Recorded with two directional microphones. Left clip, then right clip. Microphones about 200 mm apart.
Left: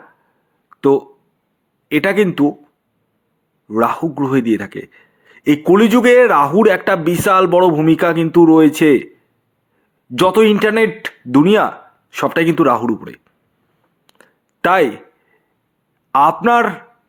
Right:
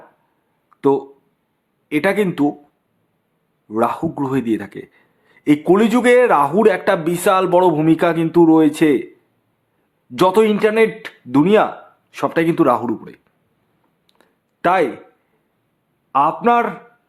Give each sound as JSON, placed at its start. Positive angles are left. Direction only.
{"t": 0.7, "sound": "a sound", "side_deg": 10}
{"t": 1.9, "sound": "a man's voice", "side_deg": 10}
{"t": 3.7, "sound": "a man's voice", "side_deg": 10}
{"t": 10.2, "sound": "a man's voice", "side_deg": 10}
{"t": 14.1, "sound": "a sound", "side_deg": 15}
{"t": 16.1, "sound": "a man's voice", "side_deg": 20}